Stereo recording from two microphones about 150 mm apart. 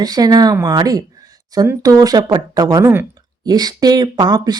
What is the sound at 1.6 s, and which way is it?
Speech, 20° right (ahead or behind).